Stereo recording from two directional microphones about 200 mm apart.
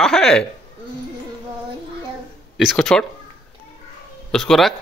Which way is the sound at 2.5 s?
Centre (ahead or behind).